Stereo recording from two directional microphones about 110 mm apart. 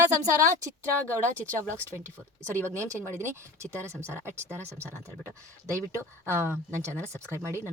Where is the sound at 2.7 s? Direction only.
25° right (ahead or behind).